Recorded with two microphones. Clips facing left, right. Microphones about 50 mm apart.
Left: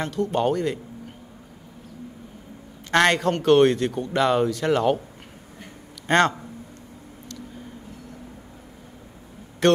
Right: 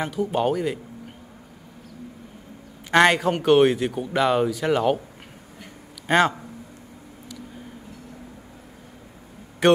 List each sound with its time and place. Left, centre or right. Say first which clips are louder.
0.0 s a man's voice: even; centre
2.9 s a man's voice: right 2 dB; centre
6.0 s a man's voice: even; centre
9.6 s a man's voice: right 1 dB; centre